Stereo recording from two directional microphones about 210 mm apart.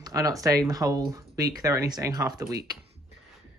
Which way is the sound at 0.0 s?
15° right (ahead or behind).